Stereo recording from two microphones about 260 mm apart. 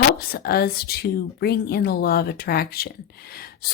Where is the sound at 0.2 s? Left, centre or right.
Left.